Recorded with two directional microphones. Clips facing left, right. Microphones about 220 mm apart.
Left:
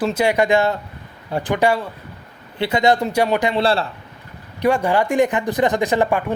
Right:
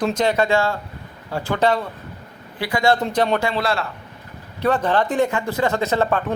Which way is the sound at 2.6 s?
20° left (ahead or behind).